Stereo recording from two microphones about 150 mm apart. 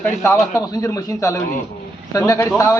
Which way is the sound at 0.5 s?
25° left (ahead or behind).